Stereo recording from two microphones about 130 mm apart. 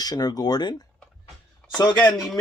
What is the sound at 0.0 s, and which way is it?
Speech, 30° left (ahead or behind).